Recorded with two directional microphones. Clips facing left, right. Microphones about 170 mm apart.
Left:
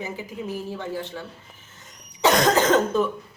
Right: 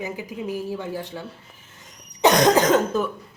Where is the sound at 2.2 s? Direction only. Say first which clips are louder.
Right 2 dB; 20° right (ahead or behind).